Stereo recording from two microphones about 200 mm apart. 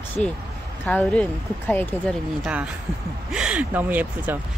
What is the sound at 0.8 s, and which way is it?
Speech, 10° left (ahead or behind).